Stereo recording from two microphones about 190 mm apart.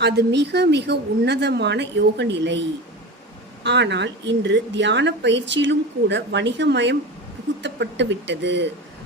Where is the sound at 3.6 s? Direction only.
65° right (ahead or behind).